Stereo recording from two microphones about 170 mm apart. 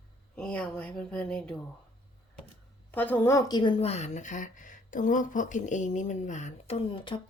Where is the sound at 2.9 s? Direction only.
10° left (ahead or behind).